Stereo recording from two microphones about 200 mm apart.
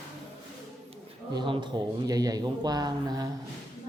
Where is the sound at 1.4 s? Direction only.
20° right (ahead or behind).